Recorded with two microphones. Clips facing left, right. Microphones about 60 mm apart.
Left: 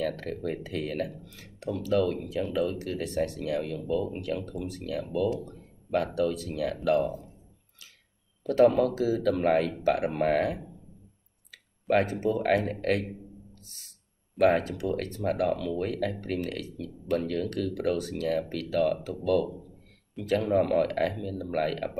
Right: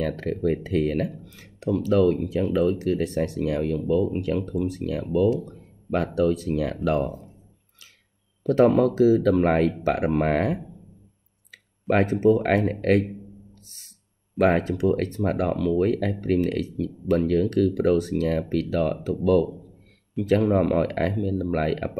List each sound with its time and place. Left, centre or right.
0.0 s speech: right
8.5 s speech: right
12.0 s speech: right
14.4 s speech: right
20.4 s speech: right